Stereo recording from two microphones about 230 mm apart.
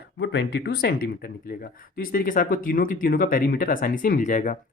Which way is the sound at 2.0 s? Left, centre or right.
Left.